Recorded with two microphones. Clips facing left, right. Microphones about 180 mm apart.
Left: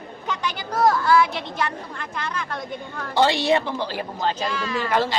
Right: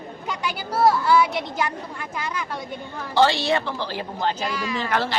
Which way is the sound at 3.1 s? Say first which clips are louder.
Even; 15° left (ahead or behind).